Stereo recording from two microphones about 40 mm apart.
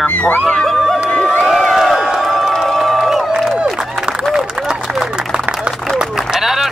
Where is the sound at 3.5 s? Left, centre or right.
Right.